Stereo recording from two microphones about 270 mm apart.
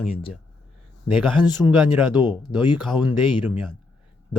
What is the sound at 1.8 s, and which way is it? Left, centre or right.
Speech, centre.